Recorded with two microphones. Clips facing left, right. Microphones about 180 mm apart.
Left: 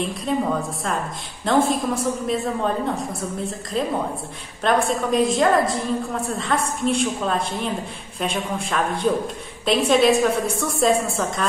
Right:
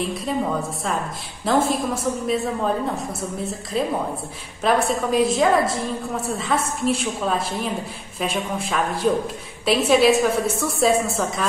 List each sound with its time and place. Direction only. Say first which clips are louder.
0.0 s a woman's voice: left 1 dB; centre (ahead or behind)